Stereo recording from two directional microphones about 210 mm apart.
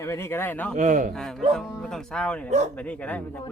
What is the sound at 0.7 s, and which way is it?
Speech, 40° right (ahead or behind).